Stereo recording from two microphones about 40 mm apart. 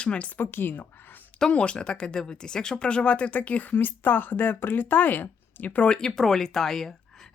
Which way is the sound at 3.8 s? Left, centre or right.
Left.